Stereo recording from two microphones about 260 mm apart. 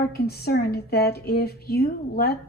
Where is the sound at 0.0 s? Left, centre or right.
Left.